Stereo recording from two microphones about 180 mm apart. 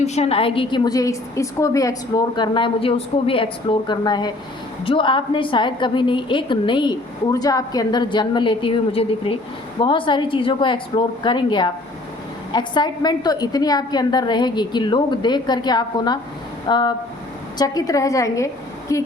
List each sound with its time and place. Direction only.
0.0 s a woman's voice: 35° left (ahead or behind); by 19.0 s 15° left (ahead or behind)